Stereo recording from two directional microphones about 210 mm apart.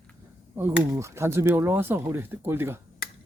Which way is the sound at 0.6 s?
10° right (ahead or behind).